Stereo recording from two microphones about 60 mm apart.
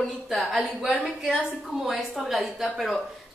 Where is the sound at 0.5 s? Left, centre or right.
Centre.